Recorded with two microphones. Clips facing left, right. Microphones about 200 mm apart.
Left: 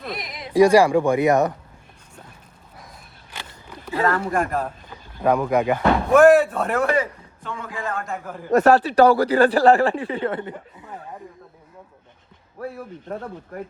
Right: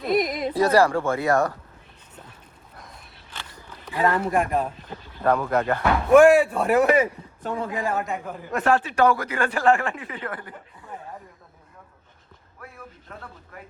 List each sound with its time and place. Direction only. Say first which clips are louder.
0.1 s a sound: right 15 dB; 50° right (ahead or behind)
0.5 s speech: left 6 dB; 15° left (ahead or behind)
2.7 s a sound: left 1 dB; 5° left (ahead or behind)
4.0 s speech: even; 20° right (ahead or behind)
5.2 s speech: left 3 dB; 10° left (ahead or behind)
6.1 s a man's voice: even; 5° right (ahead or behind)
7.4 s a man's voice: right 5 dB; 35° right (ahead or behind)
7.7 s a man's voice: even; 15° right (ahead or behind)
7.9 s speech: right 2 dB; 5° right (ahead or behind)
8.4 s speech: left 7 dB; 45° left (ahead or behind); by 10.5 s 25° left (ahead or behind)
12.5 s speech: left 12 dB; 35° left (ahead or behind)